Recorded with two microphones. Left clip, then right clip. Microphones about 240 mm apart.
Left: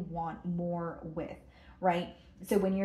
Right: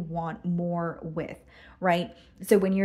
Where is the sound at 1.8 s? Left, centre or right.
Right.